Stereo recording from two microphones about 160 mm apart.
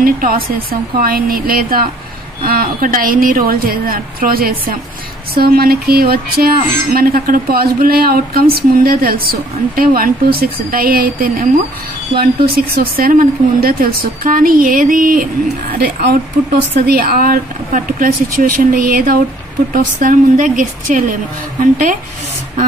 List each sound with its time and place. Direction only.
0.0 s speech: 65° right (ahead or behind)